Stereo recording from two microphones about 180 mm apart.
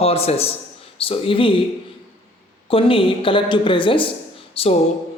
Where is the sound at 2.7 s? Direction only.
30° left (ahead or behind).